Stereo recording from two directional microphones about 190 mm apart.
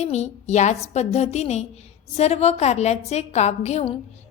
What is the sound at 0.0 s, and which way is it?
A woman's voice, 35° left (ahead or behind).